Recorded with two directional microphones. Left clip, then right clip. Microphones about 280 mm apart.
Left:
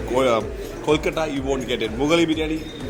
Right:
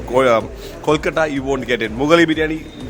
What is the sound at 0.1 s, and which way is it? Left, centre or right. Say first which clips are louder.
A man's voice: right 6 dB; right.